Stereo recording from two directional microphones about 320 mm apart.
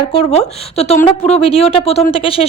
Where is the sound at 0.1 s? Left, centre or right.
Centre.